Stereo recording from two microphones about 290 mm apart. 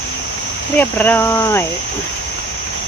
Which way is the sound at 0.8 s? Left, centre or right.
Centre.